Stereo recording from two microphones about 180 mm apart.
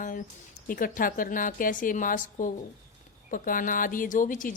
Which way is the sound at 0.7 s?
50° left (ahead or behind).